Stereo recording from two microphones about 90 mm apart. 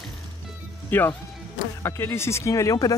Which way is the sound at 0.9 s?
20° left (ahead or behind).